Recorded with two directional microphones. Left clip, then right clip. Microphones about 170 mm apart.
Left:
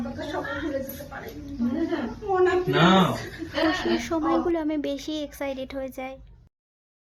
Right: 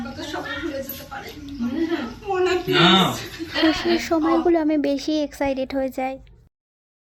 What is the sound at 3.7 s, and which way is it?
Speech, 25° right (ahead or behind).